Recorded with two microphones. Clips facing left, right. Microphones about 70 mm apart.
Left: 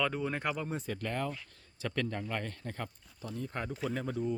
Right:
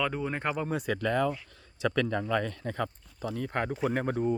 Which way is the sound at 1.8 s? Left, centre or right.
Right.